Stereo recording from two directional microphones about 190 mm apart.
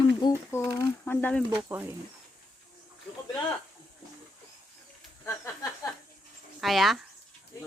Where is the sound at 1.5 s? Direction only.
10° right (ahead or behind).